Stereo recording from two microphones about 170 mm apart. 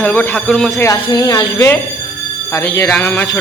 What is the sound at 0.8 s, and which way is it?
Speech, 20° left (ahead or behind).